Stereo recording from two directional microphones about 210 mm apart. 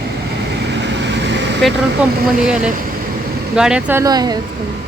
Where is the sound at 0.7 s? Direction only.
55° right (ahead or behind).